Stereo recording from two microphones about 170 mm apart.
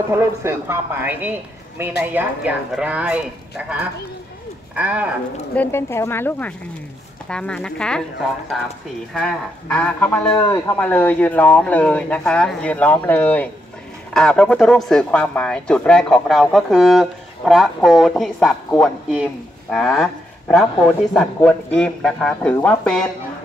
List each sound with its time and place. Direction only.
0.1 s speech: 15° right (ahead or behind)
5.5 s speech: 10° left (ahead or behind)
9.1 s speech: 5° left (ahead or behind)